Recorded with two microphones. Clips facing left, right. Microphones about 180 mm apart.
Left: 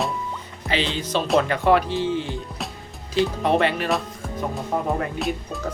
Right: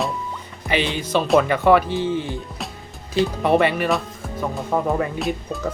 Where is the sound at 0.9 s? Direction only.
10° right (ahead or behind).